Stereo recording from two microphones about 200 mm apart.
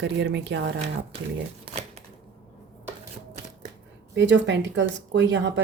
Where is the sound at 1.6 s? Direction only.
30° right (ahead or behind).